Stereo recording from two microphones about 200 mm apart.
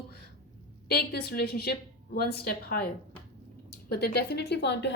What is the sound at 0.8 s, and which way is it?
Speech, 55° left (ahead or behind).